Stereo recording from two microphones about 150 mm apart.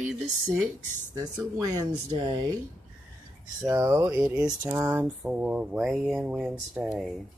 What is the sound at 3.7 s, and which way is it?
Speech, 20° right (ahead or behind).